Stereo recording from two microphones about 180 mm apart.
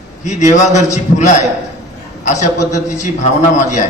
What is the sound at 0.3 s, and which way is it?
A man's voice, 40° left (ahead or behind).